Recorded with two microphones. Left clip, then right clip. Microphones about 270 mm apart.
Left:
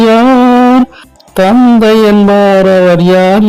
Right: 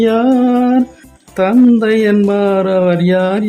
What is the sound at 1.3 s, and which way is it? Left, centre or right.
Speech, left.